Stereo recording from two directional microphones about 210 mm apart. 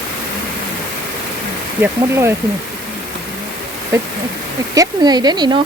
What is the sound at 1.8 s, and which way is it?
Speech, 10° right (ahead or behind).